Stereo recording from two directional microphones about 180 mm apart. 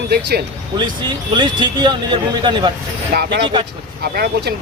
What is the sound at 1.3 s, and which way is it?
A man's voice, 25° right (ahead or behind).